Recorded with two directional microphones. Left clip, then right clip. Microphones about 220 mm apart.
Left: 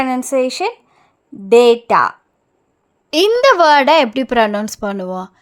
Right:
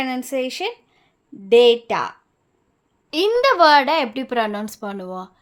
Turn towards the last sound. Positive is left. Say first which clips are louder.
# left 7 dB
turn(degrees=25)  # may be behind; listen again after turning